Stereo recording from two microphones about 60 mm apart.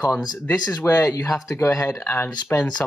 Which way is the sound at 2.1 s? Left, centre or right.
Left.